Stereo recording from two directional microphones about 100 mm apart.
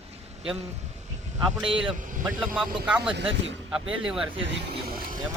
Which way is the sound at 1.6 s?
60° right (ahead or behind).